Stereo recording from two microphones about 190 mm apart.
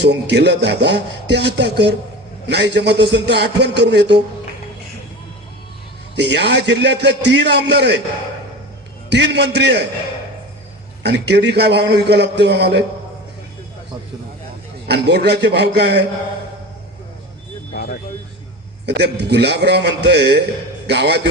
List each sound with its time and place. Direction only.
0.0 s speech: 65° right (ahead or behind)
6.1 s speech: 65° right (ahead or behind)
9.0 s speech: 65° right (ahead or behind)
11.0 s speech: 60° right (ahead or behind)
14.8 s speech: 60° right (ahead or behind)
17.7 s vehicle: 55° left (ahead or behind)
18.9 s a man's voice: 60° right (ahead or behind)